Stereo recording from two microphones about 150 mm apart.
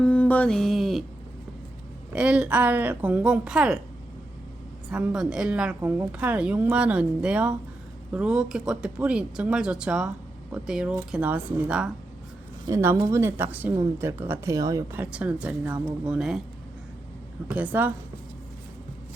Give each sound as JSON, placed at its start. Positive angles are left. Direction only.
{"t": 0.0, "sound": "mantra", "side_deg": 10}
{"t": 2.1, "sound": "a woman's voice", "side_deg": -10}
{"t": 4.9, "sound": "a woman's voice", "side_deg": -5}
{"t": 12.6, "sound": "a woman's voice", "side_deg": -20}
{"t": 14.9, "sound": "a woman's voice", "side_deg": -10}
{"t": 17.5, "sound": "a woman's voice", "side_deg": -10}